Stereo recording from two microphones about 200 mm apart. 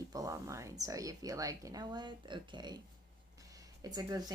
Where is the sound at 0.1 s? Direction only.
15° right (ahead or behind).